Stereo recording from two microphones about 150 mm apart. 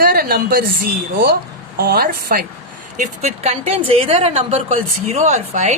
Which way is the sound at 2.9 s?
55° right (ahead or behind).